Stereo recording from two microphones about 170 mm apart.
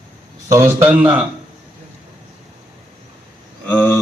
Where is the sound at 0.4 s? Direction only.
15° right (ahead or behind).